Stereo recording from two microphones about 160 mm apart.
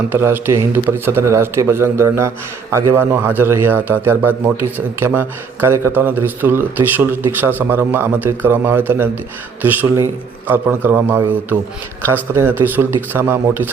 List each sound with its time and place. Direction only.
0.1 s speech: 15° right (ahead or behind)